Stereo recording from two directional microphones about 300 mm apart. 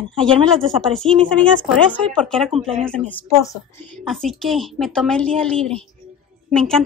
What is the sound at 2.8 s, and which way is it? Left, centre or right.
A woman's voice, centre.